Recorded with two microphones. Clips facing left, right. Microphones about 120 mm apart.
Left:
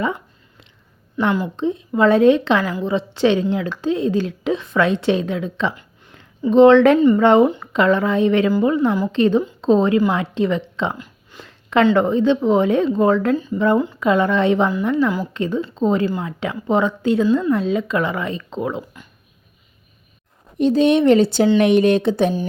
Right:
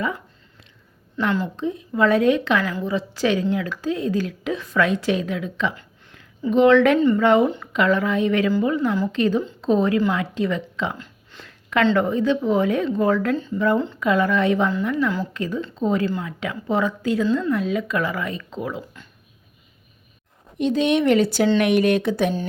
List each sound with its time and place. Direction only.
1.1 s a woman's voice: 15° left (ahead or behind)
1.5 s a woman's voice: 25° left (ahead or behind)
10.9 s a sound: 15° left (ahead or behind)
11.4 s a sound: 25° left (ahead or behind)
11.9 s a woman's voice: 25° left (ahead or behind)
20.6 s a woman's voice: 35° left (ahead or behind)